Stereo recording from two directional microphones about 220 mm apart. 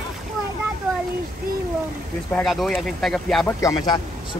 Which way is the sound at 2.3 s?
Centre (ahead or behind).